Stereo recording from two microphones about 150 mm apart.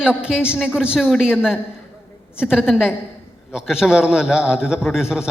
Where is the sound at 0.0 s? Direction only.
5° right (ahead or behind).